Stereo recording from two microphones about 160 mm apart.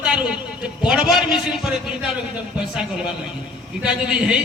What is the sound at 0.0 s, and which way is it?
A man's voice, 5° right (ahead or behind).